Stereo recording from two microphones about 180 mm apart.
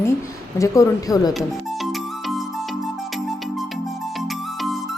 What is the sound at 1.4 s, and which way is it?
Music, centre (ahead or behind).